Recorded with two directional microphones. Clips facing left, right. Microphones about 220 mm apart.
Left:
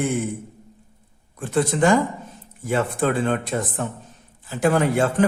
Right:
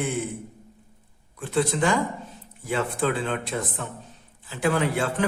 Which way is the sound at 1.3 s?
45° left (ahead or behind).